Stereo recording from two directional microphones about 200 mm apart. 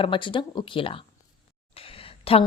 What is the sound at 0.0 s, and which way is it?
Speech, 25° left (ahead or behind).